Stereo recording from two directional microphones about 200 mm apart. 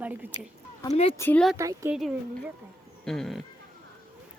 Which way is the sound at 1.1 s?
10° left (ahead or behind).